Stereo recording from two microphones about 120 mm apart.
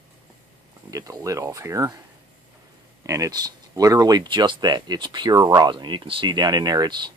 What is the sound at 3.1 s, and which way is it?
Speech, 30° right (ahead or behind).